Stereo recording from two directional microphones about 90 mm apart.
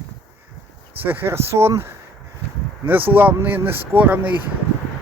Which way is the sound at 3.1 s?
20° right (ahead or behind).